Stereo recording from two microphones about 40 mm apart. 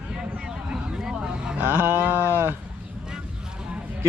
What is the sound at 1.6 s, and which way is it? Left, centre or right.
Speech, right.